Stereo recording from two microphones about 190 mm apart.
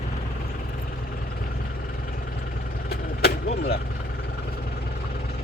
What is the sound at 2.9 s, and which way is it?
Vehicle, 55° left (ahead or behind).